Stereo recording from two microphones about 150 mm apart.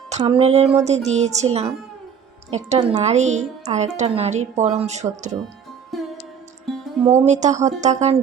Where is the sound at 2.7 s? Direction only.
45° right (ahead or behind).